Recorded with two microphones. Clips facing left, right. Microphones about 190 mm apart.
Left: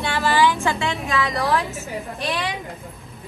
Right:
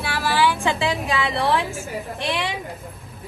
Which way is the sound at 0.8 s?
30° right (ahead or behind).